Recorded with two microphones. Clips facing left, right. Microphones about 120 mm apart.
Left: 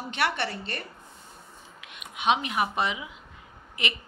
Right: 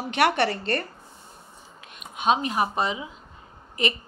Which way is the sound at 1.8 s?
40° right (ahead or behind).